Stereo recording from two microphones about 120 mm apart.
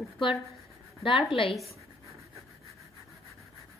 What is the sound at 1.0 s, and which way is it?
Speech, 45° left (ahead or behind).